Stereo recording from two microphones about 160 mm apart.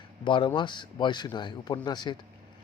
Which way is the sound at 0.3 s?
30° left (ahead or behind).